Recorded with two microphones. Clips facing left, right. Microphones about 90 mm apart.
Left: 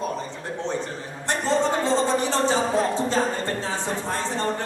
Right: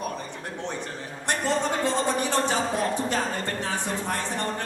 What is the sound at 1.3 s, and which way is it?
Speech, 20° left (ahead or behind).